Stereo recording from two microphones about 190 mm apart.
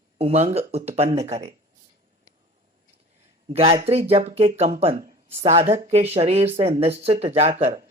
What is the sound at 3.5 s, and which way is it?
Speech, 30° right (ahead or behind).